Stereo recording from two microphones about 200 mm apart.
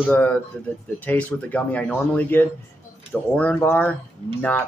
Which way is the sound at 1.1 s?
10° left (ahead or behind).